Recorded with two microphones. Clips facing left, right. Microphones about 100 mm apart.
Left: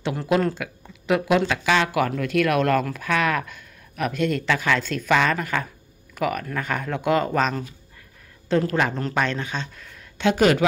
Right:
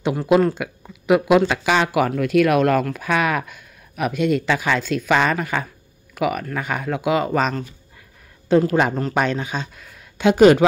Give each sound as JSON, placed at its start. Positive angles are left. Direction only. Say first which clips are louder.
{"t": 0.1, "sound": "speech", "louder": "right 5 dB", "side_deg": -10}